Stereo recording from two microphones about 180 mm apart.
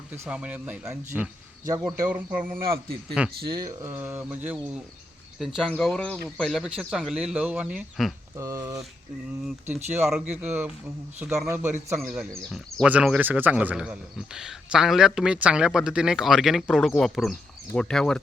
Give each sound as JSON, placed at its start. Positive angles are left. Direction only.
{"t": 0.1, "sound": "speech", "side_deg": -5}
{"t": 2.5, "sound": "a man's voice", "side_deg": -60}
{"t": 3.5, "sound": "speech", "side_deg": -20}
{"t": 3.9, "sound": "a man's voice", "side_deg": -10}
{"t": 8.4, "sound": "speech", "side_deg": -15}
{"t": 9.9, "sound": "speech", "side_deg": -5}
{"t": 11.9, "sound": "a man's voice", "side_deg": 0}